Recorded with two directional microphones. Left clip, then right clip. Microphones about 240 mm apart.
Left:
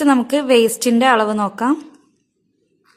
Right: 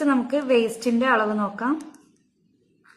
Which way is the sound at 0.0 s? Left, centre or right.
Left.